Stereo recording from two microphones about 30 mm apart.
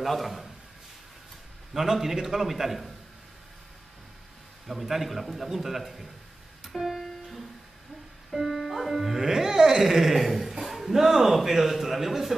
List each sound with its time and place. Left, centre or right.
0.0 s a man's voice: centre
1.7 s a man's voice: centre
4.6 s a man's voice: centre
6.6 s music: centre
9.2 s speech: centre
9.8 s a man's voice: centre